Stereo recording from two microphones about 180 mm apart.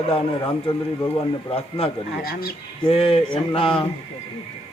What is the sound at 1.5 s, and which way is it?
Speech, 30° left (ahead or behind).